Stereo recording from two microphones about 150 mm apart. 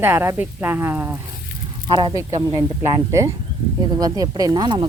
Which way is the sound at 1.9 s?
30° right (ahead or behind).